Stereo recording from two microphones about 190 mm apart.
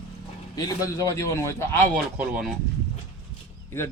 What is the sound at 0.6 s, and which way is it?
Speech, 20° left (ahead or behind).